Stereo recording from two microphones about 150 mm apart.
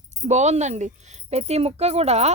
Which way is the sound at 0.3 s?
50° right (ahead or behind).